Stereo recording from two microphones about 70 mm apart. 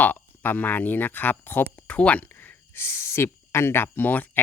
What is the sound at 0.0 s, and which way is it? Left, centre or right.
Speech, left.